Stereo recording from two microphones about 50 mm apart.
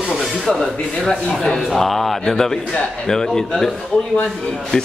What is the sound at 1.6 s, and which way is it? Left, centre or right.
A man's voice, centre.